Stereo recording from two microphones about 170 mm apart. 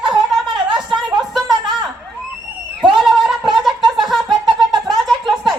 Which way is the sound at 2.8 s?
Centre (ahead or behind).